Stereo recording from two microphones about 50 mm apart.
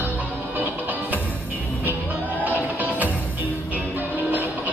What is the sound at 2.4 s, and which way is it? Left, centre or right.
Music, right.